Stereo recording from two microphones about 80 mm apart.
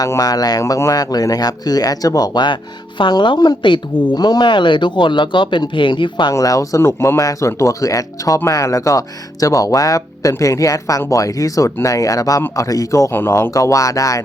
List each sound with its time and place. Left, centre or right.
0.2 s speech: left
3.0 s speech: left
4.1 s speech: left
6.3 s speech: left
7.2 s speech: left